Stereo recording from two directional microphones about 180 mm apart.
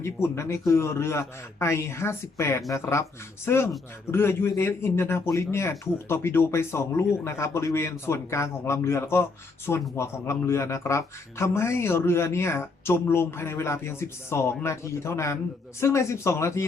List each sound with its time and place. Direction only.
0.0 s speech: 15° left (ahead or behind)